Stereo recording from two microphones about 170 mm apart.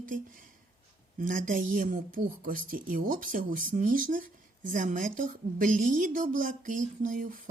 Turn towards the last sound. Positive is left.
turn(degrees=-55)  # may be behind; listen again after turning